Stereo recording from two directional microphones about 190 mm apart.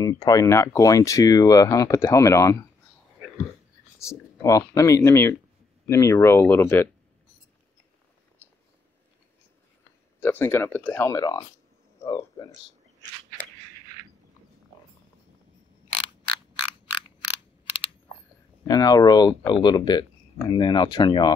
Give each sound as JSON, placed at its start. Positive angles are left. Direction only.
{"t": 0.0, "sound": "speech", "side_deg": 20}
{"t": 4.4, "sound": "speech", "side_deg": 15}
{"t": 8.4, "sound": "a sound", "side_deg": 10}
{"t": 10.2, "sound": "speech", "side_deg": 10}
{"t": 12.0, "sound": "a sound", "side_deg": 15}
{"t": 18.7, "sound": "speech", "side_deg": 20}